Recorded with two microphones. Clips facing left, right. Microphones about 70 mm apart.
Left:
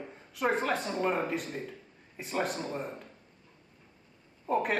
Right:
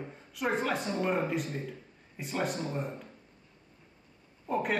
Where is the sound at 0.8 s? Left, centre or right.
Left.